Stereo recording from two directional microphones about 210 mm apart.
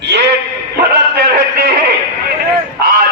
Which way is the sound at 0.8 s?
45° right (ahead or behind).